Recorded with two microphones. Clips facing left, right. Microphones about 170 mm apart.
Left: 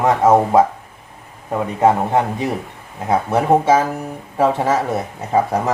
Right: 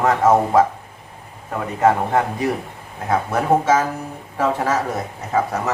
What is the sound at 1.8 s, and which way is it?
A man's voice, 20° left (ahead or behind).